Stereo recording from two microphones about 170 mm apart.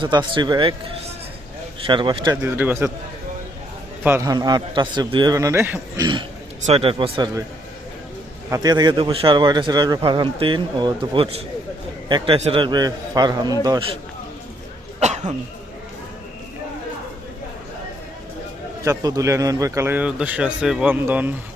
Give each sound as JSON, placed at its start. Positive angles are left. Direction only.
{"t": 0.0, "sound": "a man's voice", "side_deg": -25}
{"t": 1.9, "sound": "a man's voice", "side_deg": -30}
{"t": 2.3, "sound": "a man's voice", "side_deg": -15}
{"t": 4.0, "sound": "a man's voice", "side_deg": -15}
{"t": 6.0, "sound": "a man's voice", "side_deg": -30}
{"t": 8.4, "sound": "a man's voice", "side_deg": -20}
{"t": 18.9, "sound": "a man's voice", "side_deg": -20}